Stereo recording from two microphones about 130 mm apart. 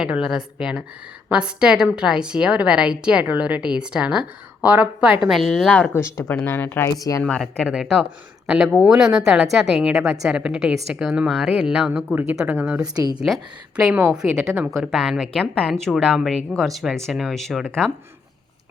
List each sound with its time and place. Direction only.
0.0 s a woman's voice: 5° right (ahead or behind)
6.0 s a woman's voice: 20° left (ahead or behind); by 17.9 s centre (ahead or behind)